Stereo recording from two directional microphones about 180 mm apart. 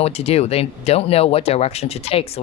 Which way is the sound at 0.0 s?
35° left (ahead or behind).